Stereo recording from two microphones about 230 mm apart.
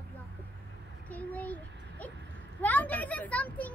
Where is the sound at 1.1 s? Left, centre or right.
Centre.